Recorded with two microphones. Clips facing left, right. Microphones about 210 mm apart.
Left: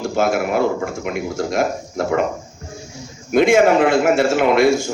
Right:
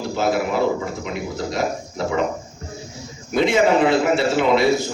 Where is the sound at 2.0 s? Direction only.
50° left (ahead or behind).